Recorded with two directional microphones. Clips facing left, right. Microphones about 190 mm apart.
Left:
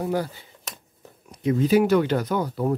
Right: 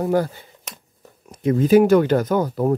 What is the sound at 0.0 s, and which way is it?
Speech, 50° right (ahead or behind).